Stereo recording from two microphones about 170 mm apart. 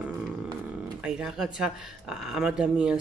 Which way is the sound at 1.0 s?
5° right (ahead or behind).